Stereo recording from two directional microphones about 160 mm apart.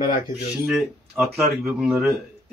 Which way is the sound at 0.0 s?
60° left (ahead or behind).